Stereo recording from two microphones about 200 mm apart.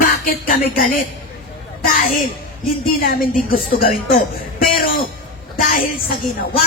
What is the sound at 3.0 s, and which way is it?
A woman's voice, 45° left (ahead or behind).